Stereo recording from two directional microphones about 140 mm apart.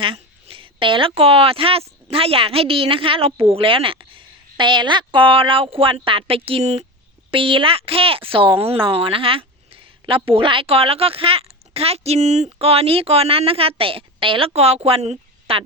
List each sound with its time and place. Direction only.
0.0 s a woman's voice: 40° right (ahead or behind)